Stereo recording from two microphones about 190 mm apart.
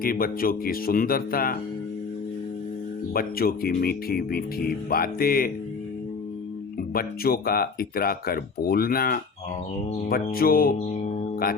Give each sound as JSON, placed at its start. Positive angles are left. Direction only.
{"t": 0.0, "sound": "speech", "side_deg": 50}
{"t": 3.1, "sound": "speech", "side_deg": 50}
{"t": 6.7, "sound": "speech", "side_deg": 50}